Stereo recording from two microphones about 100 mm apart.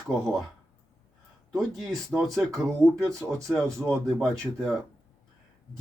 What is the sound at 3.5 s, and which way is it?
Speech, 30° right (ahead or behind).